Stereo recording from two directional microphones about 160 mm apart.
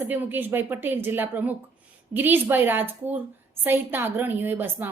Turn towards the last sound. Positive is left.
turn(degrees=-10)  # may be behind; listen again after turning